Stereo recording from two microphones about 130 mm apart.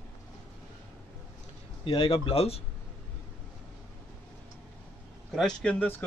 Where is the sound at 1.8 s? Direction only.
45° left (ahead or behind).